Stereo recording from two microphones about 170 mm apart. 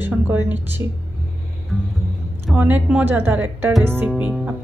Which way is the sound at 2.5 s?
10° right (ahead or behind).